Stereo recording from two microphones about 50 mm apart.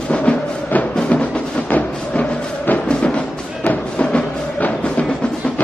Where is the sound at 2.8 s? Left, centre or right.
Centre.